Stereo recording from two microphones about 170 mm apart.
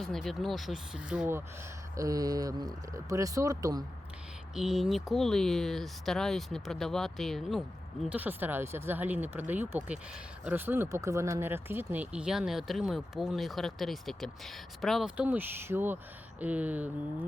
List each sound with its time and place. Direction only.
0.0 s speech: centre (ahead or behind)
2.0 s speech: 20° right (ahead or behind)
4.5 s speech: 5° right (ahead or behind)
8.1 s speech: 10° right (ahead or behind)